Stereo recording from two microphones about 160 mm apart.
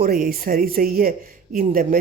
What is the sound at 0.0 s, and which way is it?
A woman's voice, 65° right (ahead or behind).